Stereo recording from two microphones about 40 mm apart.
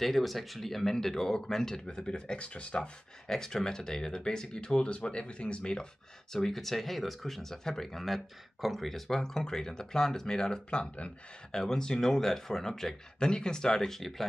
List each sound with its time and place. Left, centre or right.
0.0 s speech: centre; by 2.9 s left
3.3 s speech: centre
6.3 s speech: centre; by 11.1 s left
11.5 s speech: centre